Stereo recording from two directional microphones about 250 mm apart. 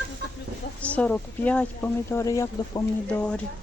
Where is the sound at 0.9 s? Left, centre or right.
Centre.